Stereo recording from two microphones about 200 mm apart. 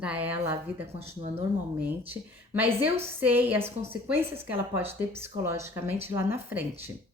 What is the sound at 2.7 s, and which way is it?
Speech, 30° right (ahead or behind).